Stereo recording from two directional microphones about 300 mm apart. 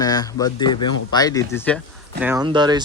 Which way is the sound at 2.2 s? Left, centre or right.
Centre.